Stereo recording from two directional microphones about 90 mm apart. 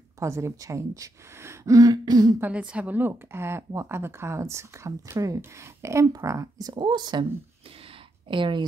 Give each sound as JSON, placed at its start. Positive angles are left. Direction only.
{"t": 0.2, "sound": "speech", "side_deg": -35}
{"t": 2.4, "sound": "speech", "side_deg": -15}
{"t": 6.7, "sound": "a woman's voice", "side_deg": -55}
{"t": 8.3, "sound": "a woman's voice", "side_deg": -65}